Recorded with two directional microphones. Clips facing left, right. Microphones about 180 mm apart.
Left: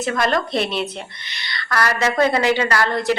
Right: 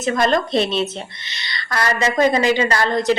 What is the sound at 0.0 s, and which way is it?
A woman's voice, 20° right (ahead or behind).